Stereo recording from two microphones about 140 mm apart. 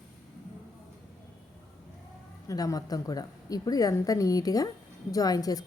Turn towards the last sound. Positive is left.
turn(degrees=25)  # may be behind; listen again after turning